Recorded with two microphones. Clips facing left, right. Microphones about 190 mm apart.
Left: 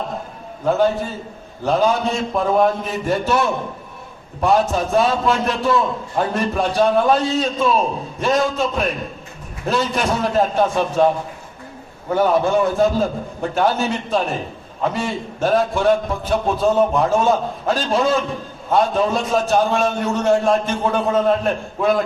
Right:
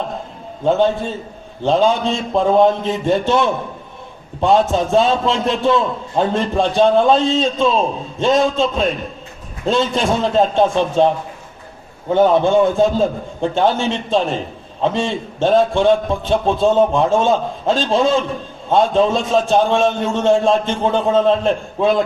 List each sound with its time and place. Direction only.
0.6 s a man's voice: 25° right (ahead or behind)
12.1 s a man's voice: 25° right (ahead or behind)